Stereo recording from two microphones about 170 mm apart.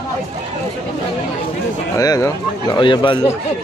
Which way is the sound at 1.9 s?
20° left (ahead or behind).